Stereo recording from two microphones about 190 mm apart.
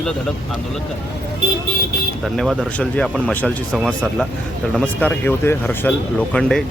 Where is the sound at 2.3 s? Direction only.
Centre (ahead or behind).